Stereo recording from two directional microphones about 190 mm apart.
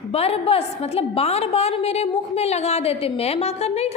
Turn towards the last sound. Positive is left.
turn(degrees=35)  # may be behind; listen again after turning